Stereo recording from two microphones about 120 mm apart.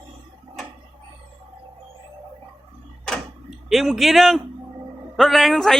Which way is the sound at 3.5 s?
Centre (ahead or behind).